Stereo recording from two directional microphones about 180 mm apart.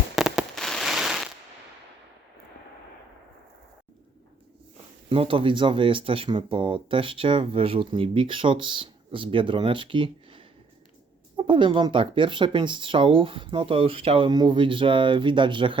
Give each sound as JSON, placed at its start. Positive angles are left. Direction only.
{"t": 0.2, "sound": "fireworks", "side_deg": 0}
{"t": 5.0, "sound": "speech", "side_deg": -30}